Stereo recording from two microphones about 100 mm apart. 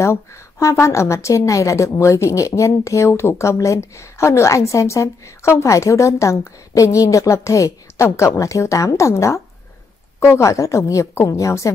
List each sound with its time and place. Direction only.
0.0 s a woman's voice: 30° left (ahead or behind)